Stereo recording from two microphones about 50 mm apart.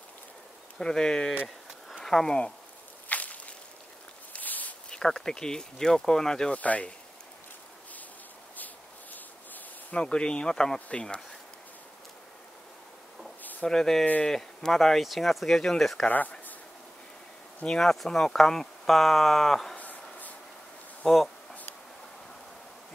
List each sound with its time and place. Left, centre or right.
0.7 s speech: centre
3.1 s whip: left
4.3 s zipper: left
4.8 s speech: centre
6.5 s speech: left
9.9 s speech: centre
13.4 s a sound: left
13.7 s speech: centre
16.1 s a sound: left
17.6 s speech: centre
19.8 s a sound: left
21.0 s bee: centre